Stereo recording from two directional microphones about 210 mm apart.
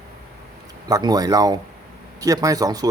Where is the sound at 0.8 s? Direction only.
20° right (ahead or behind).